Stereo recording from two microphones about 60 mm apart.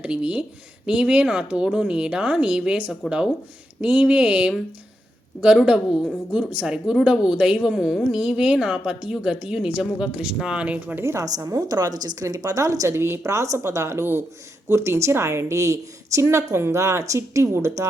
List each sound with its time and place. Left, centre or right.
0.0 s speech: centre
5.6 s speech: centre
6.5 s speech: right
6.8 s speech: centre
11.0 s a woman's voice: right
11.3 s a woman's voice: right
12.9 s a woman's voice: right
13.2 s speech: right
13.9 s speech: right
14.7 s a woman's voice: right